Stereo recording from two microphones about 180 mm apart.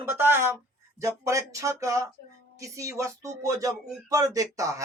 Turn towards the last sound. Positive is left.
turn(degrees=-20)  # may be behind; listen again after turning